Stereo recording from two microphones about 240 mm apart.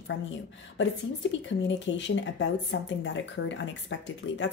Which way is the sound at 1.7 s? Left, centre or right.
Left.